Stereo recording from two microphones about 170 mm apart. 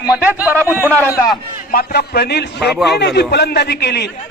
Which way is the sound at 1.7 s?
65° left (ahead or behind).